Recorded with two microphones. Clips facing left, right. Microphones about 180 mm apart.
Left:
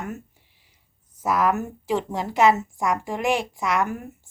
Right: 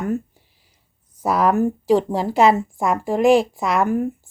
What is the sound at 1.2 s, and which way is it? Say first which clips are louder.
Speech: right 5 dB; 35° right (ahead or behind).